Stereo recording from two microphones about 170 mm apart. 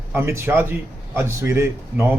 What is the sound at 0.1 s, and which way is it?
Speech, 15° right (ahead or behind).